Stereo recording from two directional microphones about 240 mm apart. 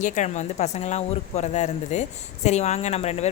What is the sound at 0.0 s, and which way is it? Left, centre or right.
A woman's voice, left.